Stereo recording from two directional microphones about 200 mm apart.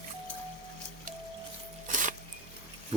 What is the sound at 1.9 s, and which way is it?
Music, 40° right (ahead or behind).